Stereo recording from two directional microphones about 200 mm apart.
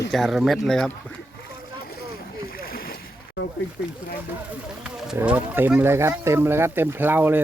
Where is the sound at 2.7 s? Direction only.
50° left (ahead or behind).